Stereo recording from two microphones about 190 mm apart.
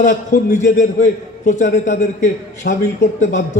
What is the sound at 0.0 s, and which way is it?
A man's voice, 40° left (ahead or behind).